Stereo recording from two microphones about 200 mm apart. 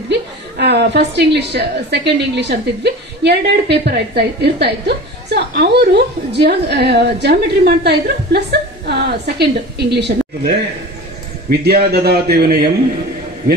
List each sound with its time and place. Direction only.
0.1 s a woman's voice: 55° right (ahead or behind)